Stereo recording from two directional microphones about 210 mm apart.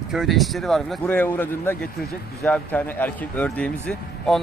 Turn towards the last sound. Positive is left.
turn(degrees=5)  # may be behind; listen again after turning